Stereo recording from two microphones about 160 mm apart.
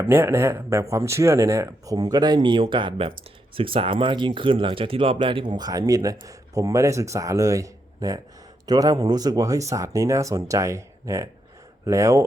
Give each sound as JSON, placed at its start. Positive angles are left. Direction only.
{"t": 0.1, "sound": "speech", "side_deg": -15}